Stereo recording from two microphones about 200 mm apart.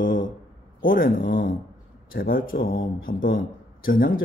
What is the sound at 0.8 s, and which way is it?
Speech, 45° left (ahead or behind).